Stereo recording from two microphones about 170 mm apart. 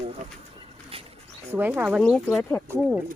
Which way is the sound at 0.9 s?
35° right (ahead or behind).